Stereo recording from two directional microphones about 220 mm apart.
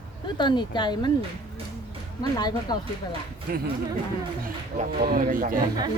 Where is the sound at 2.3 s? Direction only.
15° left (ahead or behind).